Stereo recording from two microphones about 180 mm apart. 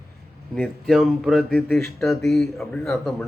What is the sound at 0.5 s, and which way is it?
Speech, centre (ahead or behind).